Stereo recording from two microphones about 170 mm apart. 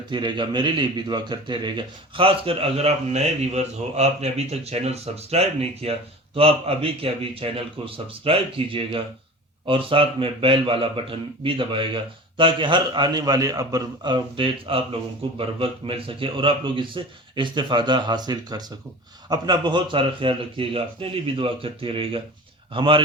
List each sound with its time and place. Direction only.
0.1 s a man's voice: 25° right (ahead or behind)